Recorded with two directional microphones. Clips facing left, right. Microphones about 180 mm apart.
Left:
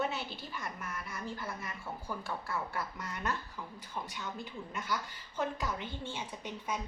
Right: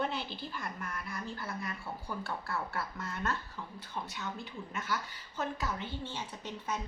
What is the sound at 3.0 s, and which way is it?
Speech, 15° left (ahead or behind).